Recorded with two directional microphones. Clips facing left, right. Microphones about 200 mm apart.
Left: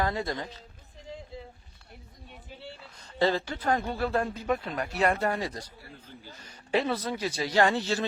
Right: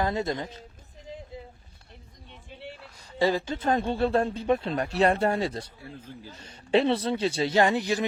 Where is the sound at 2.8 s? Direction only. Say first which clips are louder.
Right 1 dB; 10° right (ahead or behind).